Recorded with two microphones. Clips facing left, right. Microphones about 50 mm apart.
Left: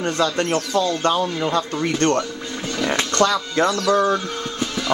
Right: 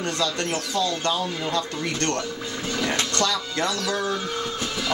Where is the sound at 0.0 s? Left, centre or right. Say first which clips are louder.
Left 5 dB; left.